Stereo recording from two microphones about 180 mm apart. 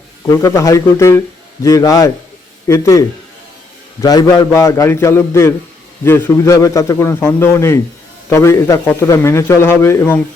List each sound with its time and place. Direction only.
0.3 s a man's voice: 15° left (ahead or behind)